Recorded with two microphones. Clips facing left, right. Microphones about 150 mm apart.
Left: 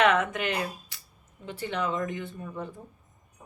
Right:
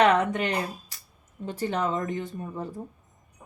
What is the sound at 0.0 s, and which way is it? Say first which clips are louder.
Speech: right 3 dB; 35° right (ahead or behind).